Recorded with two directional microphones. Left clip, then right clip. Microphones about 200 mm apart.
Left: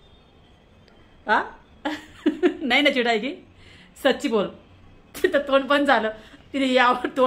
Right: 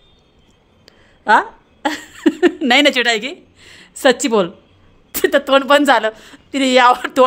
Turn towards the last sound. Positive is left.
turn(degrees=-60)  # may be behind; listen again after turning